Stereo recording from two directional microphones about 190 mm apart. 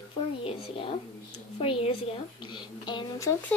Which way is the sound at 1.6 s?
30° left (ahead or behind).